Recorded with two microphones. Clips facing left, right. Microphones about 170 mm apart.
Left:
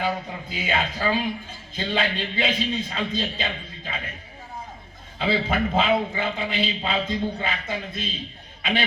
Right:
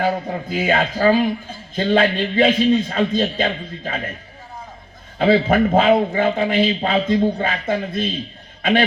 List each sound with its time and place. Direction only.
0.0 s a man's voice: 45° right (ahead or behind)
5.1 s a man's voice: 50° right (ahead or behind)